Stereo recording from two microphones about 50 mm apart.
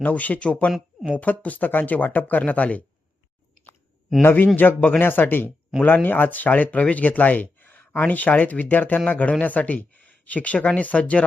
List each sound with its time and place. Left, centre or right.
0.0 s speech: left
4.2 s speech: left
4.5 s speech: left